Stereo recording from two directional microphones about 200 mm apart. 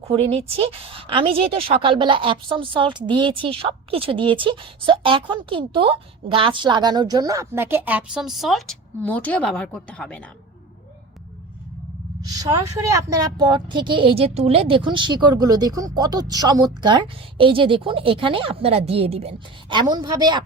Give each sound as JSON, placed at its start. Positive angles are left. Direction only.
{"t": 0.1, "sound": "a woman's voice", "side_deg": -30}
{"t": 12.2, "sound": "a woman's voice", "side_deg": -20}